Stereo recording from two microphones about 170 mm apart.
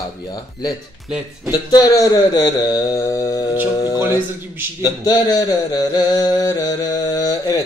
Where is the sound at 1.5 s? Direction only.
25° left (ahead or behind).